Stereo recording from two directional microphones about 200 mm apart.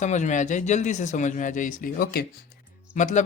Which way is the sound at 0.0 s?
35° left (ahead or behind).